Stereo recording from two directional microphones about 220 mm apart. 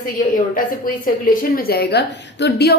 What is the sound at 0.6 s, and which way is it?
A woman's voice, 40° left (ahead or behind).